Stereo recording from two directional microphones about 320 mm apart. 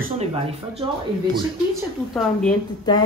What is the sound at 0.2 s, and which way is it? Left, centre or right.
Speech, centre.